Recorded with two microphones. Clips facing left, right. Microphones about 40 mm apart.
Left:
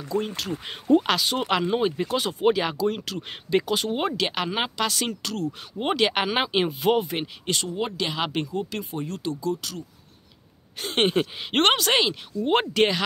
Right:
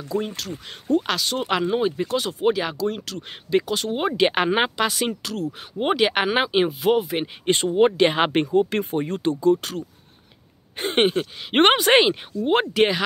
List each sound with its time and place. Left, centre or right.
0.1 s speech: centre
0.7 s speech: centre
1.0 s speech: centre
4.1 s speech: right; by 7.2 s centre
7.4 s speech: right
11.2 s speech: centre
11.5 s speech: centre
12.4 s speech: centre